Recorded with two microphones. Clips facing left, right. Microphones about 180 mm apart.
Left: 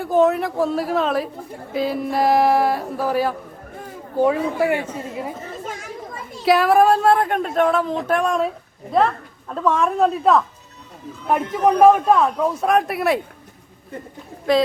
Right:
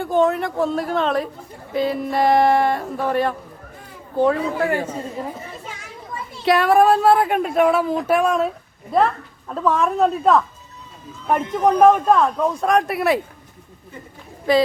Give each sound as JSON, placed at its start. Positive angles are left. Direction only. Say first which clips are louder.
{"t": 0.0, "sound": "speech", "louder": "left 1 dB", "side_deg": 0}
{"t": 5.6, "sound": "children playing", "louder": "left 5 dB", "side_deg": 45}
{"t": 6.4, "sound": "speech", "louder": "even", "side_deg": 0}
{"t": 14.5, "sound": "speech", "louder": "right 1 dB", "side_deg": 0}